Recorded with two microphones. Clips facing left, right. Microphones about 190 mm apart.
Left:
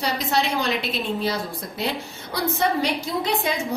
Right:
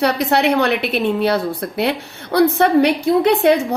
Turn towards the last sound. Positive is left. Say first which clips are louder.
# right 12 dB
turn(degrees=-65)  # may be behind; listen again after turning